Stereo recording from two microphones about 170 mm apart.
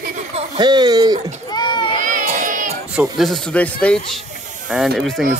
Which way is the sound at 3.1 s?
Centre (ahead or behind).